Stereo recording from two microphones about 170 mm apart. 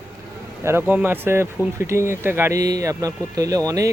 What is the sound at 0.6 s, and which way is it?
Speech, 15° right (ahead or behind).